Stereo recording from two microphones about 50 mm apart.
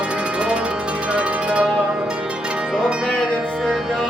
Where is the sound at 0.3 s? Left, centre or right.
Centre.